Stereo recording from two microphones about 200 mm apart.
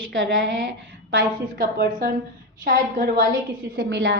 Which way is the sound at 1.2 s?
45° right (ahead or behind).